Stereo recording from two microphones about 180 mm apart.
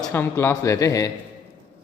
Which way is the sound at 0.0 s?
15° left (ahead or behind).